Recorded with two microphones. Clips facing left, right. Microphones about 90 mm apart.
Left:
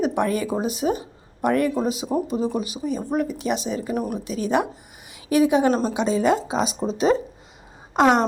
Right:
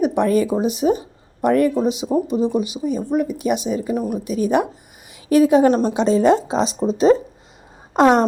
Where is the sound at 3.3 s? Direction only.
30° left (ahead or behind).